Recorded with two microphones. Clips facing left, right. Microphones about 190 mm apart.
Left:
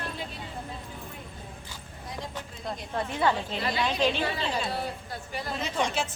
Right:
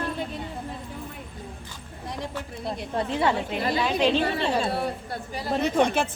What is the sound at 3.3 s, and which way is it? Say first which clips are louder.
Speech: right 4 dB; 60° right (ahead or behind).